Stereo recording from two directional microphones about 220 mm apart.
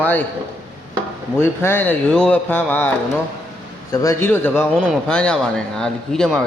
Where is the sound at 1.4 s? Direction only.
10° left (ahead or behind).